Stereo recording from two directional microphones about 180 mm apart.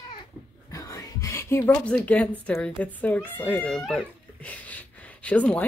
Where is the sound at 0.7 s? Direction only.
20° left (ahead or behind).